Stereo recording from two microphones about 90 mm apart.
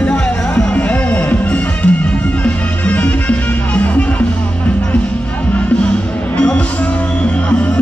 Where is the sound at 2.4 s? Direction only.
15° left (ahead or behind).